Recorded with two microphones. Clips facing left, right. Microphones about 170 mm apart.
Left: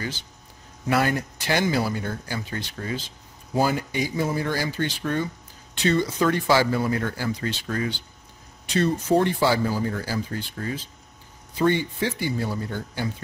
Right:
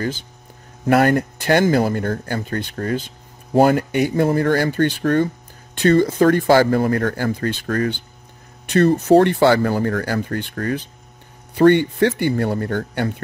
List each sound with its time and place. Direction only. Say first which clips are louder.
0.8 s speech: right 8 dB; 55° right (ahead or behind)